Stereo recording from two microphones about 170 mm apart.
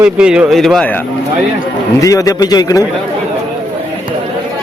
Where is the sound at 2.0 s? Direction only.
20° left (ahead or behind).